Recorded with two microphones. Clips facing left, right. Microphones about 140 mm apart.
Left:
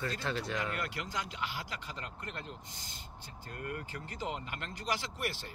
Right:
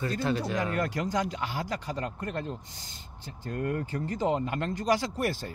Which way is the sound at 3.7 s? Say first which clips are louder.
Right 11 dB; 40° right (ahead or behind).